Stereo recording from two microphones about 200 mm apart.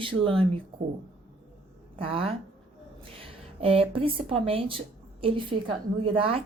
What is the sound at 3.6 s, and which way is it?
Speech, 30° right (ahead or behind).